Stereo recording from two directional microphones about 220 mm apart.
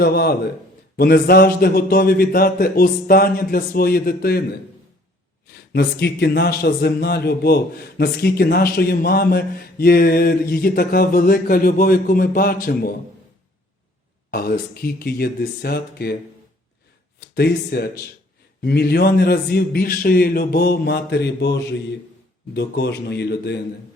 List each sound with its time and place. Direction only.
0.0 s speech: 45° left (ahead or behind)
5.7 s speech: 50° left (ahead or behind)
14.3 s speech: 45° left (ahead or behind)
17.3 s speech: 45° left (ahead or behind)